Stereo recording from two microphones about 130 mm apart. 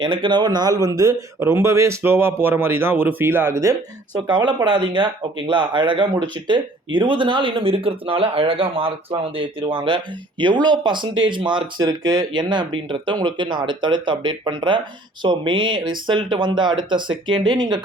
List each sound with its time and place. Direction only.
0.0 s a man's voice: 40° right (ahead or behind); by 3.8 s 20° right (ahead or behind)
4.3 s speech: 40° right (ahead or behind)